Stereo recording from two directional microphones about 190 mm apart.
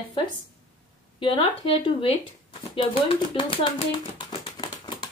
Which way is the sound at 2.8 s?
25° left (ahead or behind).